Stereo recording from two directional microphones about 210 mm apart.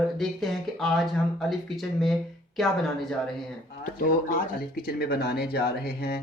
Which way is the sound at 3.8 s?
40° left (ahead or behind).